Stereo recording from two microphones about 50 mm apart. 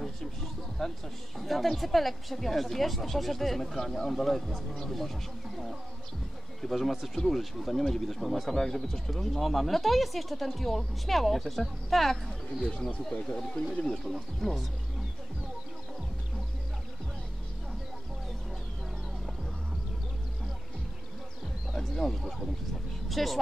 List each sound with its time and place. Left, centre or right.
0.0 s a sound: centre
1.4 s speech: centre
12.6 s speech: centre
13.1 s speech: left
13.7 s speech: centre
21.7 s speech: centre